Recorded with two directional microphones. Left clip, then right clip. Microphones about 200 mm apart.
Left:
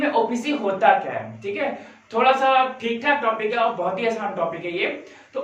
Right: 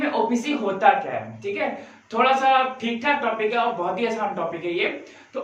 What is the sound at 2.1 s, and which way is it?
A man's voice, 15° right (ahead or behind).